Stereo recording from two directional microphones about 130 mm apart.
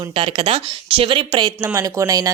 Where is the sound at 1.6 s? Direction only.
25° right (ahead or behind).